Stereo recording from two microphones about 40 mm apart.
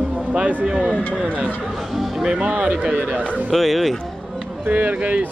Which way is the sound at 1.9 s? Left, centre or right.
Centre.